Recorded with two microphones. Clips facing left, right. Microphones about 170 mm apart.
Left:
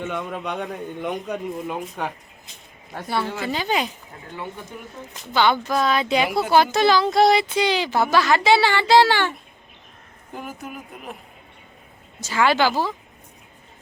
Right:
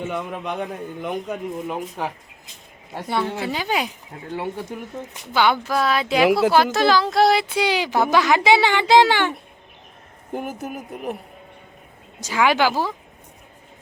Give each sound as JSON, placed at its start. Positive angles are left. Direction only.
{"t": 0.0, "sound": "a man's voice", "side_deg": -5}
{"t": 2.9, "sound": "speech", "side_deg": -20}
{"t": 5.3, "sound": "a man's voice", "side_deg": -10}
{"t": 10.3, "sound": "speech", "side_deg": -45}
{"t": 12.2, "sound": "speech", "side_deg": -15}